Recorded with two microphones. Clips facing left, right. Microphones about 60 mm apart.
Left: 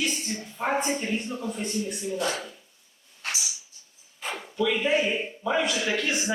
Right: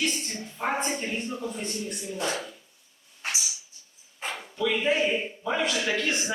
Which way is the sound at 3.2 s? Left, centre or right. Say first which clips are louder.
Even; centre.